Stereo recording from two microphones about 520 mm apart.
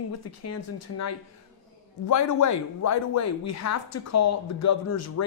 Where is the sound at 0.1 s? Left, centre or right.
Left.